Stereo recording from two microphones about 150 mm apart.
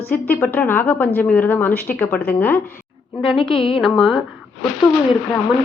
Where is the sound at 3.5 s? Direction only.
35° left (ahead or behind).